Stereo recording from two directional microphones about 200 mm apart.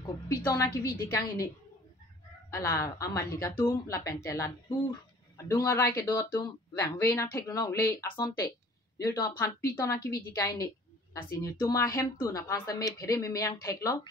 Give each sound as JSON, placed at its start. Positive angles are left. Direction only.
{"t": 0.4, "sound": "speech", "side_deg": 15}
{"t": 2.5, "sound": "speech", "side_deg": 15}